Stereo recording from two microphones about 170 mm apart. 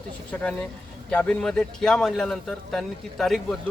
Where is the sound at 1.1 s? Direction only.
5° left (ahead or behind).